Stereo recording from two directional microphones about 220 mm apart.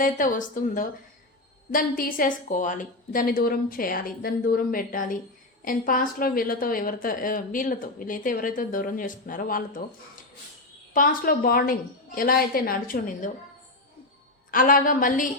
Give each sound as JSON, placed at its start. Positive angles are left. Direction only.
{"t": 0.0, "sound": "a woman's voice", "side_deg": 40}
{"t": 10.9, "sound": "a woman's voice", "side_deg": 40}
{"t": 14.5, "sound": "a woman's voice", "side_deg": 40}